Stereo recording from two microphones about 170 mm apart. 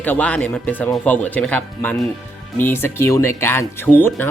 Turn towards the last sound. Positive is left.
turn(degrees=10)  # may be behind; listen again after turning